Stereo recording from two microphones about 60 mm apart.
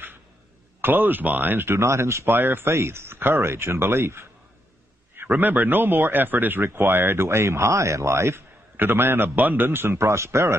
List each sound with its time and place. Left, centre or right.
0.7 s a man's voice: right
1.7 s speech: right
2.3 s a man's voice: right
8.7 s a man's voice: right
9.7 s a man's voice: right
9.9 s speech: right